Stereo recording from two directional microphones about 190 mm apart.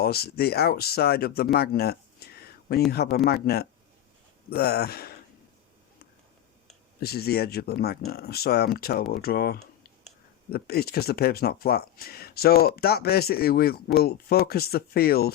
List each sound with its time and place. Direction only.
0.0 s speech: 55° left (ahead or behind)
1.5 s a sound: 55° left (ahead or behind)
2.9 s speech: 55° left (ahead or behind)
7.0 s speech: 55° left (ahead or behind)